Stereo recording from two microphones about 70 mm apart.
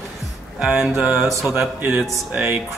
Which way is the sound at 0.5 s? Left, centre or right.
Centre.